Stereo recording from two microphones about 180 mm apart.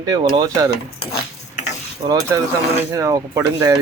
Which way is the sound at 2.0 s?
40° right (ahead or behind).